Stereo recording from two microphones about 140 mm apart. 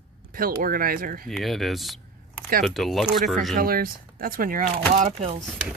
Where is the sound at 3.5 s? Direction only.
90° right.